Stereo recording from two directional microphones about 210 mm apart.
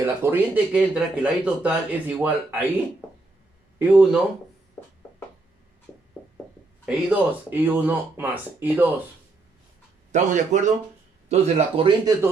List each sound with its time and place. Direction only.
0.0 s speech: 10° right (ahead or behind)
3.8 s speech: 5° right (ahead or behind)
4.8 s a sound: 15° left (ahead or behind)
6.8 s speech: 10° right (ahead or behind)
10.1 s a man's voice: 35° right (ahead or behind)